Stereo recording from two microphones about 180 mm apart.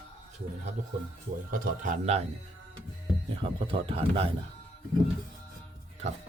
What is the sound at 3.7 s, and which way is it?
Speech, 30° right (ahead or behind).